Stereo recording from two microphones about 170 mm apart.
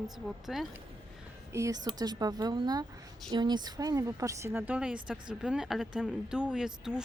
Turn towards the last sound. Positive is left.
turn(degrees=-5)  # may be behind; listen again after turning